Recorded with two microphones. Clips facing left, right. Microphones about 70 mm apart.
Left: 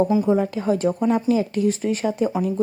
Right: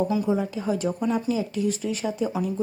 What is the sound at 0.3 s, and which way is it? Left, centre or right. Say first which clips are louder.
Speech: left 5 dB; left.